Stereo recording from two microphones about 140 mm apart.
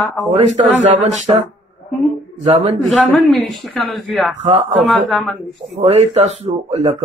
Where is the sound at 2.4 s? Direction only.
45° right (ahead or behind).